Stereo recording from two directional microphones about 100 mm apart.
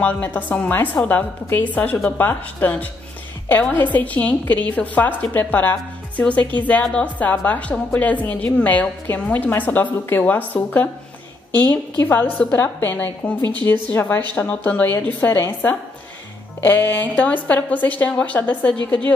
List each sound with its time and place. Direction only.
0.0 s a woman's voice: 15° left (ahead or behind)
16.6 s a woman's voice: 20° left (ahead or behind)